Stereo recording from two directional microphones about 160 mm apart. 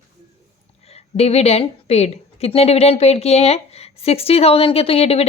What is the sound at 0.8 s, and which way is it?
A woman's voice, 40° left (ahead or behind).